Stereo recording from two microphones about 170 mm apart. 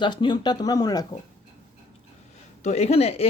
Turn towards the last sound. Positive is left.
turn(degrees=35)  # may be behind; listen again after turning